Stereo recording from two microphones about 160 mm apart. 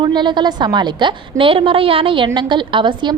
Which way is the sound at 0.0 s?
30° right (ahead or behind).